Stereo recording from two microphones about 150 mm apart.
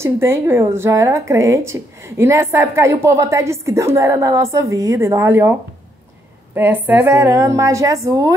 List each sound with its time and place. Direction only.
0.0 s a woman's voice: 15° right (ahead or behind)